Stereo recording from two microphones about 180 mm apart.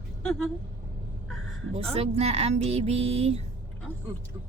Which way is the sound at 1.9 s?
35° right (ahead or behind).